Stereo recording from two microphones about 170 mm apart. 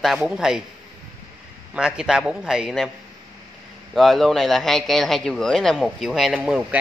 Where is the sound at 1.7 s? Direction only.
5° right (ahead or behind).